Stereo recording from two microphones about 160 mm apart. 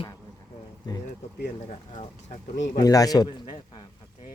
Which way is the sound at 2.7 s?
25° left (ahead or behind).